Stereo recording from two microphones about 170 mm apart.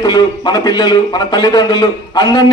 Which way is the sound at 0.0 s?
25° left (ahead or behind).